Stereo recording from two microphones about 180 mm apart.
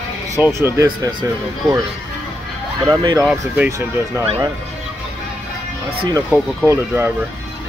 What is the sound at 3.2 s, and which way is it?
Speech, 10° right (ahead or behind).